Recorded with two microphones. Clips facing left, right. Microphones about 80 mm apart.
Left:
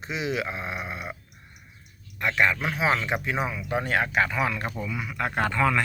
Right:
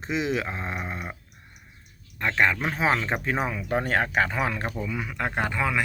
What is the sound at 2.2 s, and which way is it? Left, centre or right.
Speech, right.